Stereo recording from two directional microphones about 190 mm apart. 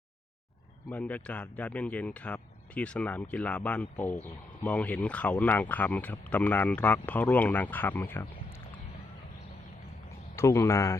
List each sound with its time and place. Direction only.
0.9 s speech: 10° left (ahead or behind)
10.3 s speech: 15° left (ahead or behind)